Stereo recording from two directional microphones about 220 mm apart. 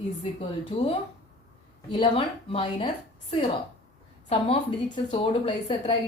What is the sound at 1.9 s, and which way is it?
A woman's voice, 25° left (ahead or behind).